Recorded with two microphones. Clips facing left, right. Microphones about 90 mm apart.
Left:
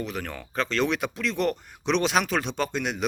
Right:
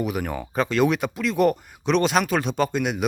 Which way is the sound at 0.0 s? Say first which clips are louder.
Right 6 dB; 10° right (ahead or behind).